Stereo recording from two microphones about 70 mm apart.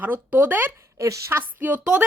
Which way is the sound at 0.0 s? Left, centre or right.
Right.